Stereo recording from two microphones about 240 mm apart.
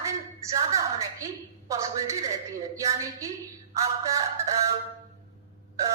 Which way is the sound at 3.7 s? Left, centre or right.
Centre.